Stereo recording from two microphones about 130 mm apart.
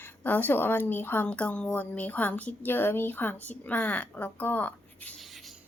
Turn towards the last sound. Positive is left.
turn(degrees=0)  # may be behind; listen again after turning